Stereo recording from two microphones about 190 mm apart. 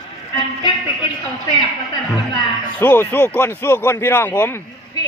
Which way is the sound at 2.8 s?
10° left (ahead or behind).